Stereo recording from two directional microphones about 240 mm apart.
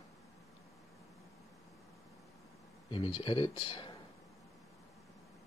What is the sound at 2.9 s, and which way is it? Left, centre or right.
Speech, left.